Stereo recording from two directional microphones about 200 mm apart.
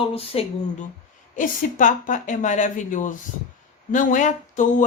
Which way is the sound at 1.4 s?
40° left (ahead or behind).